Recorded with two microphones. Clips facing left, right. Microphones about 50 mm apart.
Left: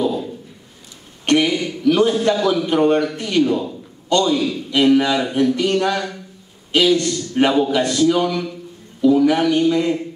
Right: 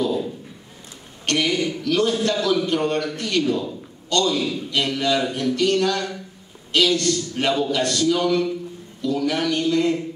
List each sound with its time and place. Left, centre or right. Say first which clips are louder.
1.2 s a man's voice: left 5 dB; centre